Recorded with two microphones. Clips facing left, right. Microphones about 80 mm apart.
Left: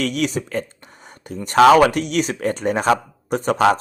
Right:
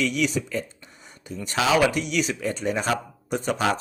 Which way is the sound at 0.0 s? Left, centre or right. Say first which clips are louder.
Left 2 dB; left.